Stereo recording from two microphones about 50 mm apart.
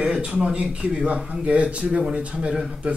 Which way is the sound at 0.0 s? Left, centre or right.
Right.